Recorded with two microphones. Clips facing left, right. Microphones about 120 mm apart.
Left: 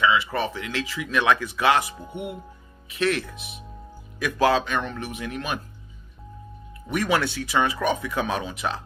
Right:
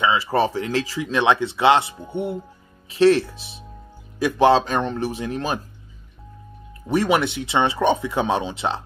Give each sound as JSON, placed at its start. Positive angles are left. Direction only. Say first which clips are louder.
{"t": 0.0, "sound": "speech", "louder": "right 3 dB", "side_deg": -35}
{"t": 6.9, "sound": "speech", "louder": "right 4 dB", "side_deg": -25}